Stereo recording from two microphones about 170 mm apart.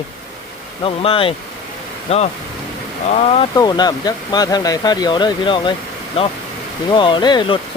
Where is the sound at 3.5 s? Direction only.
25° left (ahead or behind).